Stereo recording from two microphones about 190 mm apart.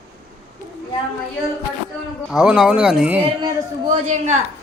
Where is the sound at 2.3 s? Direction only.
5° right (ahead or behind).